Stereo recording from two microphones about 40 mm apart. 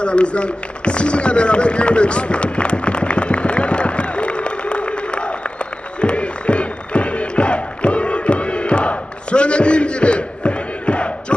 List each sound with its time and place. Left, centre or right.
0.0 s run: left